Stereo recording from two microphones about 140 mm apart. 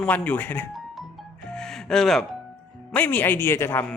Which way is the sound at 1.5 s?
5° left (ahead or behind).